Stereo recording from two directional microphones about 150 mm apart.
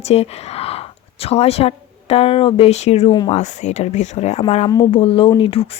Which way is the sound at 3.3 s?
50° left (ahead or behind).